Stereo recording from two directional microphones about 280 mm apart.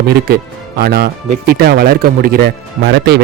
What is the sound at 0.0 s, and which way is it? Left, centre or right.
Speech, right.